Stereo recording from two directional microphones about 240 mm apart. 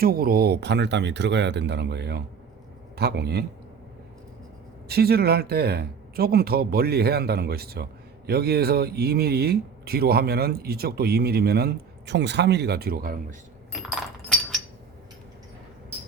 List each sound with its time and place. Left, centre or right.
0.0 s a man's voice: right
4.9 s speech: right
13.7 s coin: centre